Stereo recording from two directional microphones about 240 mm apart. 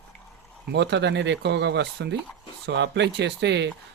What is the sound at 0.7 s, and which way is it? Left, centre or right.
Speech, right.